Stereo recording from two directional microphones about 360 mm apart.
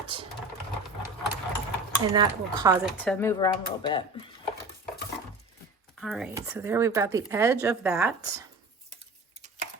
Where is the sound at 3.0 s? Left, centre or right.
Centre.